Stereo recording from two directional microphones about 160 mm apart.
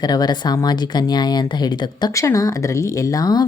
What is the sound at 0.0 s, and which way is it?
Speech, 25° left (ahead or behind).